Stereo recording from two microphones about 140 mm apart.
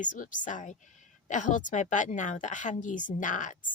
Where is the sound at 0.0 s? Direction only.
65° left (ahead or behind).